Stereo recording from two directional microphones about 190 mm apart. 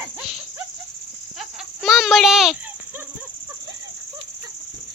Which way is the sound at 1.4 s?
Centre (ahead or behind).